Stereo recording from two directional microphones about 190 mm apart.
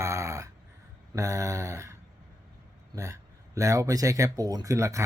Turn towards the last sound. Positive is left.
turn(degrees=-15)  # may be behind; listen again after turning